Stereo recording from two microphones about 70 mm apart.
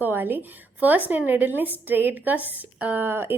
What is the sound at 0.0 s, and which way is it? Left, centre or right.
A woman's voice, right.